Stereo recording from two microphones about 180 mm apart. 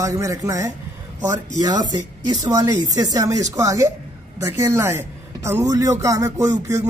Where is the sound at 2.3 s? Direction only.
20° right (ahead or behind).